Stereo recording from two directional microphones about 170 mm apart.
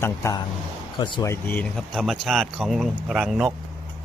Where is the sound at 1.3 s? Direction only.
15° left (ahead or behind).